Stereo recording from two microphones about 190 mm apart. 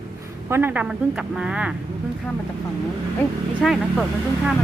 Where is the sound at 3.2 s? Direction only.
Centre (ahead or behind).